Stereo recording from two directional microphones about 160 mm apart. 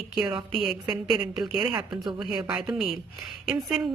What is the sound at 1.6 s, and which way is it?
Speech, 25° right (ahead or behind).